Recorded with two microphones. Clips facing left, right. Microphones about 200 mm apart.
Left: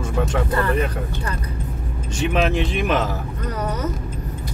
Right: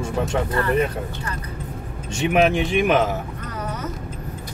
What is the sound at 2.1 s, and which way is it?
Speech, 15° right (ahead or behind).